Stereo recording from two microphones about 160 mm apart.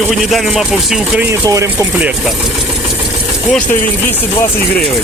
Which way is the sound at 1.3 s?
20° right (ahead or behind).